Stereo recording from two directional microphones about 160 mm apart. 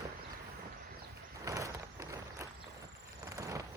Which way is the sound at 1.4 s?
20° right (ahead or behind).